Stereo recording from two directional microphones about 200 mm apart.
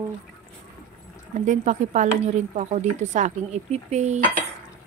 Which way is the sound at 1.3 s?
35° right (ahead or behind).